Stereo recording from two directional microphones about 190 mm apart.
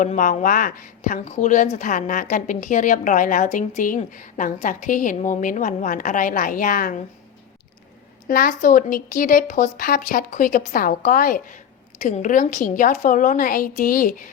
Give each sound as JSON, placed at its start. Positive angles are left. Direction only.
{"t": 0.0, "sound": "speech", "side_deg": 45}
{"t": 8.3, "sound": "speech", "side_deg": 50}